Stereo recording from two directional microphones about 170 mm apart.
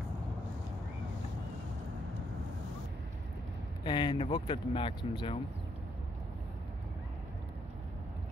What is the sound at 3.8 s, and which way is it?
Chopping, 30° left (ahead or behind).